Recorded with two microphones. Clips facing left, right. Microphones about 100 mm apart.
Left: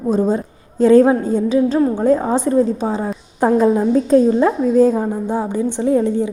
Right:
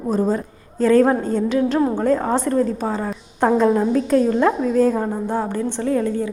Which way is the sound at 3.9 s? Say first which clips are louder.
Left 4 dB; 20° left (ahead or behind).